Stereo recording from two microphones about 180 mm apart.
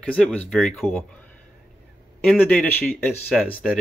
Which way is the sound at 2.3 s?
5° left (ahead or behind).